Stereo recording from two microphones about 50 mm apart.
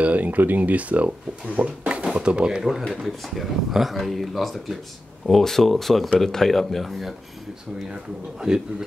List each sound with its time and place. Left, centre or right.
0.0 s speech: right
2.9 s speech: centre